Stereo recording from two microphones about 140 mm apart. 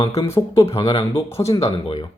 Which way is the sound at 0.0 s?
25° left (ahead or behind).